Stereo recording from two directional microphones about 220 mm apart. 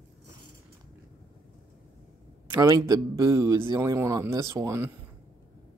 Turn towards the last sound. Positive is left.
turn(degrees=-10)  # may be behind; listen again after turning